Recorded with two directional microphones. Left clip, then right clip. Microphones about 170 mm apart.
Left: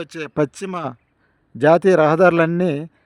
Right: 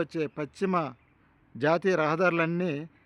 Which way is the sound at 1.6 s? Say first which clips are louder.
Left 12 dB; 50° left (ahead or behind).